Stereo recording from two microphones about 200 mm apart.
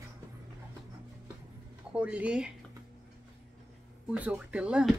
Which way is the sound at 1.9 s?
5° right (ahead or behind).